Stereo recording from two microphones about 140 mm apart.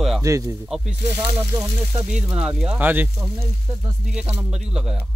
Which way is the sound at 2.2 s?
5° right (ahead or behind).